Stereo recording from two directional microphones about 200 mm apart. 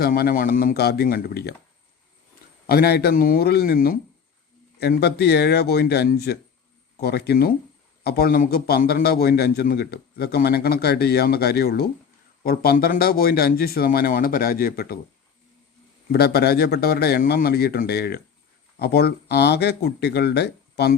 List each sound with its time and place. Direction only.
0.0 s a man's voice: 45° left (ahead or behind)
2.6 s a man's voice: 50° left (ahead or behind)
16.1 s a man's voice: 50° left (ahead or behind)